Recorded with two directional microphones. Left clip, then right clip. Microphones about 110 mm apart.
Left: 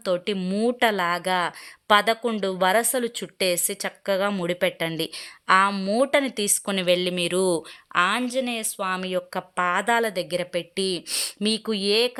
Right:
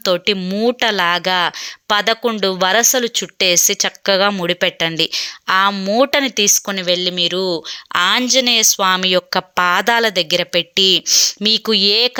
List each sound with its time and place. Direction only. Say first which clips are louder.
0.0 s a woman's voice: right 9 dB; 20° right (ahead or behind)
0.3 s speech: right 6 dB; 5° right (ahead or behind)
0.6 s a woman's voice: right 6 dB; 20° right (ahead or behind)
5.7 s speech: right 7 dB; centre (ahead or behind)
6.0 s a woman's voice: right 7 dB; 25° right (ahead or behind)
6.7 s speech: right 5 dB; 5° right (ahead or behind)
7.7 s a woman's voice: right 7 dB; 35° right (ahead or behind)
11.1 s speech: right 15 dB; centre (ahead or behind)
11.4 s a woman's voice: right 7 dB; 20° right (ahead or behind)